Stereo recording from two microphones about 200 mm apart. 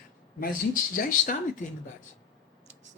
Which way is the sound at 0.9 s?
45° left (ahead or behind).